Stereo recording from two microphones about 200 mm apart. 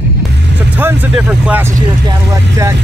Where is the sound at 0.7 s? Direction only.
10° right (ahead or behind).